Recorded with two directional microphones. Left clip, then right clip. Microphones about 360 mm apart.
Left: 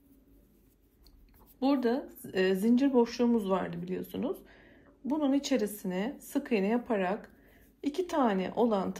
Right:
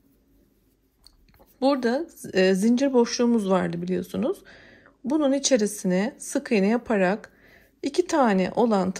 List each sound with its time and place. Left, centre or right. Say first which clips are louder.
1.6 s speech: right 6 dB; centre